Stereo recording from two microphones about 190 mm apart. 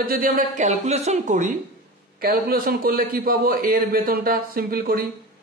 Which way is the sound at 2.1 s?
50° right (ahead or behind).